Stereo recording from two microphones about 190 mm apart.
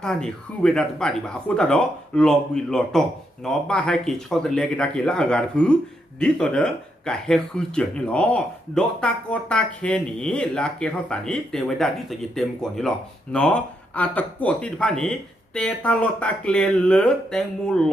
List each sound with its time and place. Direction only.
0.0 s speech: 5° left (ahead or behind)